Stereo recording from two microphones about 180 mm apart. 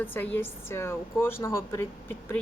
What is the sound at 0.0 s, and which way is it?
A woman's voice, 10° left (ahead or behind).